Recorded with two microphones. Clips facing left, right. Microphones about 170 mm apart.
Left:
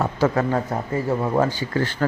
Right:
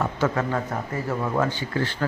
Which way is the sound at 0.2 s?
35° left (ahead or behind).